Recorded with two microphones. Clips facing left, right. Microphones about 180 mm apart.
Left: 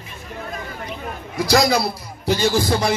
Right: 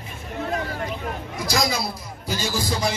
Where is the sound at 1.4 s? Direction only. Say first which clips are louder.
Left 8 dB; 65° left (ahead or behind).